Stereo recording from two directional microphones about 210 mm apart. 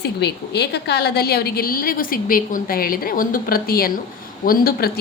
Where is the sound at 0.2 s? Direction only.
50° left (ahead or behind).